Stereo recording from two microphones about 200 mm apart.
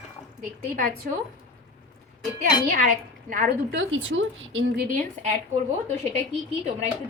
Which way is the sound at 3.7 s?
80° right.